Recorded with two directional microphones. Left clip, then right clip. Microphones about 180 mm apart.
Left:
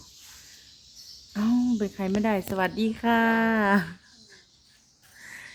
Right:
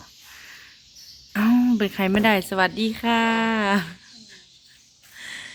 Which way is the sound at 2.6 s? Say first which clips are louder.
Right 5 dB; centre (ahead or behind).